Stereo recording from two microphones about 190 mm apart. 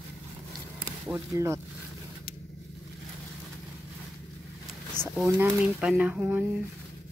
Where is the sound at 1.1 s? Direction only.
15° right (ahead or behind).